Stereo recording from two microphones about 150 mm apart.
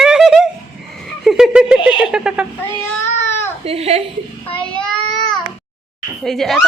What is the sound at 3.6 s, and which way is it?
Speech, 40° right (ahead or behind).